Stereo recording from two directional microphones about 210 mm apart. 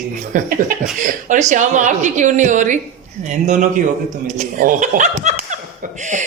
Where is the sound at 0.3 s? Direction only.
40° right (ahead or behind).